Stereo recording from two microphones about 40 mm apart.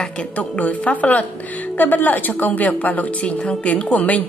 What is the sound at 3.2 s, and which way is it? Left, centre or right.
A woman's voice, left.